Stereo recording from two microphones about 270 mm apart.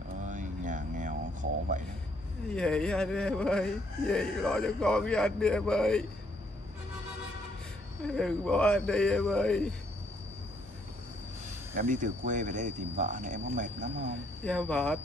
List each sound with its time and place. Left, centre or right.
0.2 s a sound: right
2.5 s speech: centre
8.1 s speech: centre
11.7 s speech: right
14.4 s speech: centre